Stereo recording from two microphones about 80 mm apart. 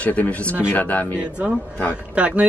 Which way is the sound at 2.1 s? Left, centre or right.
Centre.